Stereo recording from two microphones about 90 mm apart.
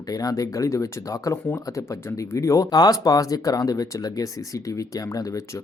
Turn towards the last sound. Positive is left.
turn(degrees=35)  # may be behind; listen again after turning